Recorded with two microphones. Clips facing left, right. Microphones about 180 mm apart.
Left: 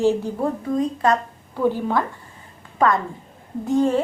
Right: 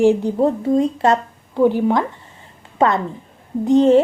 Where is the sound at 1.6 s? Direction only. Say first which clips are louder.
Right 5 dB; 15° right (ahead or behind).